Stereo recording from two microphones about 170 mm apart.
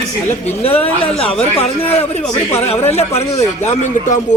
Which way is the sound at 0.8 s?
35° left (ahead or behind).